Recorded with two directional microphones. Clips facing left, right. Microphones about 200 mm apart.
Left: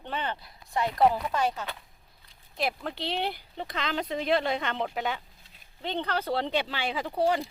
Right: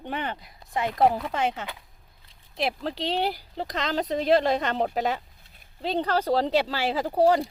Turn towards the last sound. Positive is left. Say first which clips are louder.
# right 6 dB
turn(degrees=-40)  # may be behind; listen again after turning